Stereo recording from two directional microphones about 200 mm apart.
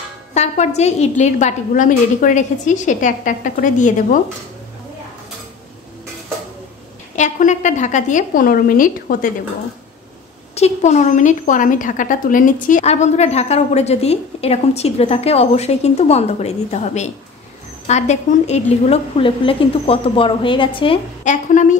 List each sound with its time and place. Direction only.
0.3 s a woman's voice: 35° left (ahead or behind)
7.2 s a woman's voice: 35° left (ahead or behind)
10.5 s a woman's voice: 35° left (ahead or behind)
21.2 s a woman's voice: 40° left (ahead or behind)